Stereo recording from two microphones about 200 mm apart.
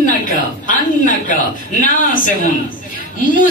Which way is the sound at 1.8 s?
40° left (ahead or behind).